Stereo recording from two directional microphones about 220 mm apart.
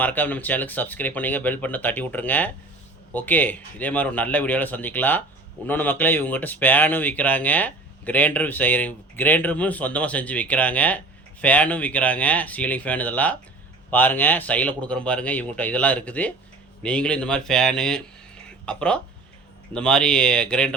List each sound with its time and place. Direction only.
0.0 s speech: 10° left (ahead or behind)